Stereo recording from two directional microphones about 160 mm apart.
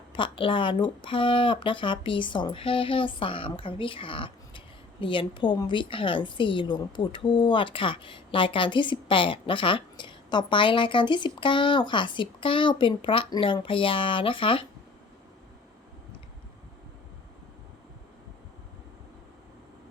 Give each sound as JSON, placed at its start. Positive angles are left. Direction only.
{"t": 0.1, "sound": "speech", "side_deg": 30}